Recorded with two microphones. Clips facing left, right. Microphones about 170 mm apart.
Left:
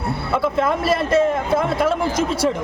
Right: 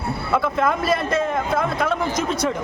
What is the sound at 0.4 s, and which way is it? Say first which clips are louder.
Speech: left 4 dB; 5° left (ahead or behind).